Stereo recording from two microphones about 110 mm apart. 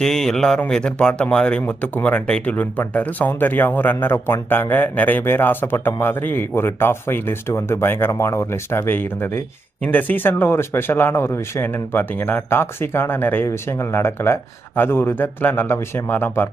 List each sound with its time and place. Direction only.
0.0 s speech: 5° left (ahead or behind)